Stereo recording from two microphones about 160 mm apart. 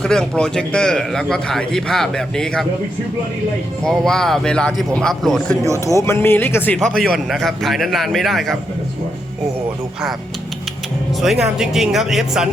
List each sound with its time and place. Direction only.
0.0 s a man's voice: 5° left (ahead or behind)
3.8 s a man's voice: 5° left (ahead or behind)
5.6 s speech: 20° right (ahead or behind)
6.0 s a man's voice: 15° left (ahead or behind); by 8.5 s centre (ahead or behind)
11.2 s a man's voice: centre (ahead or behind)